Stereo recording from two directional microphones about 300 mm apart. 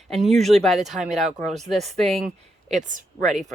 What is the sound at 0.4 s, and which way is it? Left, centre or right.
Speech, centre.